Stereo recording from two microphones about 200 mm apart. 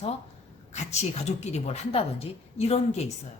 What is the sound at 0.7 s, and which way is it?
A woman's voice, 35° left (ahead or behind).